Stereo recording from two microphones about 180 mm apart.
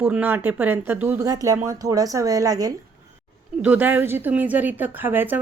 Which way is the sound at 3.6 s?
10° right (ahead or behind).